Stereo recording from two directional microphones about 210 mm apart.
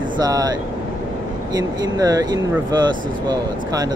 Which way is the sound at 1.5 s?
20° right (ahead or behind).